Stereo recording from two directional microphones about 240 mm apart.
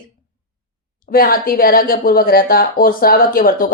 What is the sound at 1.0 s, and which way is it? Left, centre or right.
Speech, left.